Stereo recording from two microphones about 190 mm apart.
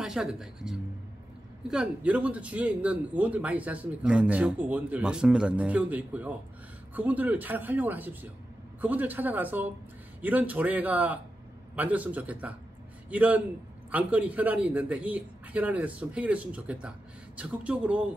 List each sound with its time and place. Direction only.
0.0 s a man's voice: 5° right (ahead or behind)